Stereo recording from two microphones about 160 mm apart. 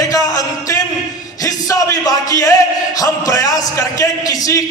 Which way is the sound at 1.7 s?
20° left (ahead or behind).